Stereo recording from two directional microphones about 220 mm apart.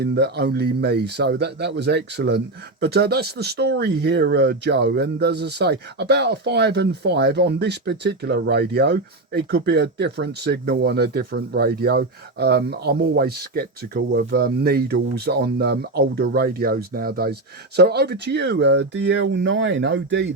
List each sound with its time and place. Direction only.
0.0 s speech: 45° right (ahead or behind)